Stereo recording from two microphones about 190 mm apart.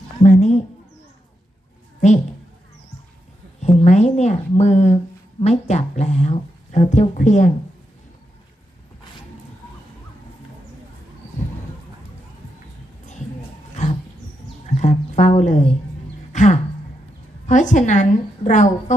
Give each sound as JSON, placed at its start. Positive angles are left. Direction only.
{"t": 0.2, "sound": "a sound", "side_deg": 40}
{"t": 2.0, "sound": "a woman's voice", "side_deg": 40}
{"t": 3.6, "sound": "speech", "side_deg": 35}
{"t": 14.8, "sound": "speech", "side_deg": 40}
{"t": 16.3, "sound": "a sound", "side_deg": 40}
{"t": 17.4, "sound": "speech", "side_deg": 40}